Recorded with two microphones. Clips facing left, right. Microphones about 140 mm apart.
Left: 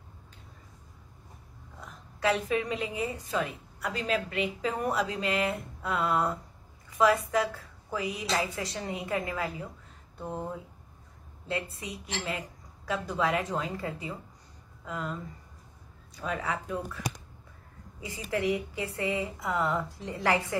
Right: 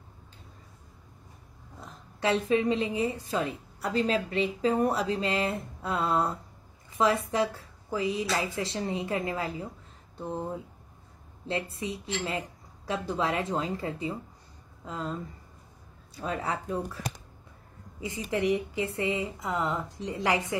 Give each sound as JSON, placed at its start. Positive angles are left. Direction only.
{"t": 1.9, "sound": "a woman's voice", "side_deg": -25}
{"t": 11.4, "sound": "a woman's voice", "side_deg": -25}
{"t": 16.2, "sound": "speech", "side_deg": -30}
{"t": 18.0, "sound": "a woman's voice", "side_deg": -20}